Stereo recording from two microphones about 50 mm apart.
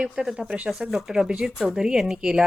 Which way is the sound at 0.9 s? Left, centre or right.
Centre.